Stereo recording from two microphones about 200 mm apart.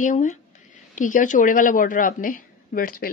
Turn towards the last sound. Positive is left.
turn(degrees=45)  # may be behind; listen again after turning